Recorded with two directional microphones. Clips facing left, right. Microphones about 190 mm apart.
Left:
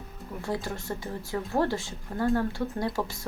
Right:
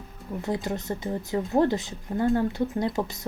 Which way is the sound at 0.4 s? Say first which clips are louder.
Right 3 dB; 20° right (ahead or behind).